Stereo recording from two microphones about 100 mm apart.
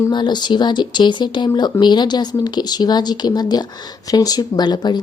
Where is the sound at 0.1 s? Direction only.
50° left (ahead or behind).